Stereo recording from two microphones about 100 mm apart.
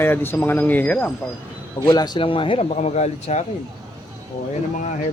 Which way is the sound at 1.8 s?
45° left (ahead or behind).